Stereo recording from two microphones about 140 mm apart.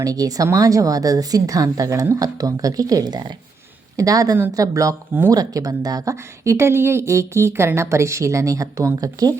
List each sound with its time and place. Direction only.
0.0 s speech: 25° right (ahead or behind)